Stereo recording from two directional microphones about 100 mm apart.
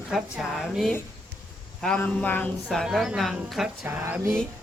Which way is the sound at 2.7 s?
Centre (ahead or behind).